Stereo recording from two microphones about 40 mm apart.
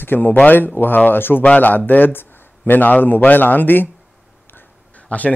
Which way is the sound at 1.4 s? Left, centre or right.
Left.